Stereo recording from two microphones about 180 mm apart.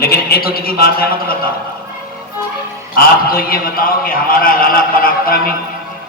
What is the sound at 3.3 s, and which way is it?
A man's voice, 55° left (ahead or behind).